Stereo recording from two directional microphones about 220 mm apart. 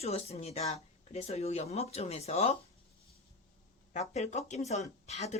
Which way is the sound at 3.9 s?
30° left (ahead or behind).